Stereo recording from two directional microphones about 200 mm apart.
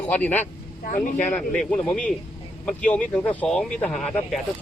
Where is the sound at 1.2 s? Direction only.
5° left (ahead or behind).